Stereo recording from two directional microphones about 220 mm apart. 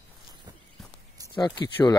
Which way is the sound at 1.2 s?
20° left (ahead or behind).